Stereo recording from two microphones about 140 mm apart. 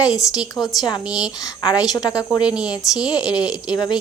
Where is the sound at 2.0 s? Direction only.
25° left (ahead or behind).